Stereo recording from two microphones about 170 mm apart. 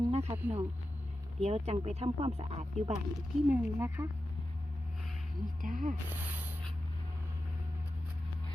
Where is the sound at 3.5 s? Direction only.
15° right (ahead or behind).